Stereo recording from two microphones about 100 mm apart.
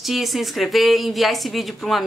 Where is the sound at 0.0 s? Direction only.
Centre (ahead or behind).